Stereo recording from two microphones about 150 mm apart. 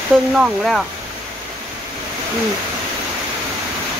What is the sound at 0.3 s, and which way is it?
Speech, 5° right (ahead or behind).